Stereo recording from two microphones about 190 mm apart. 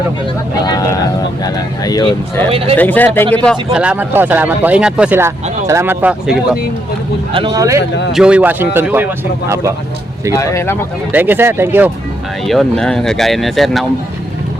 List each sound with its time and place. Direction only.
0.6 s speech: 20° left (ahead or behind)
2.5 s speech: 30° right (ahead or behind)
2.7 s speech: 10° left (ahead or behind)
7.3 s speech: 20° right (ahead or behind)
8.1 s speech: 5° right (ahead or behind)
10.3 s speech: 15° left (ahead or behind)
11.1 s speech: 10° right (ahead or behind)
12.5 s speech: centre (ahead or behind)